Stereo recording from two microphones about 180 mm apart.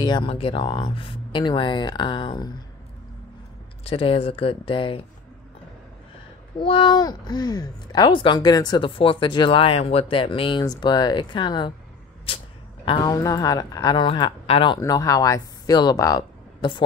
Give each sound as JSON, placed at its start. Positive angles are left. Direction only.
{"t": 0.0, "sound": "speech", "side_deg": 25}
{"t": 3.8, "sound": "speech", "side_deg": 30}
{"t": 6.6, "sound": "speech", "side_deg": 30}
{"t": 12.8, "sound": "speech", "side_deg": 25}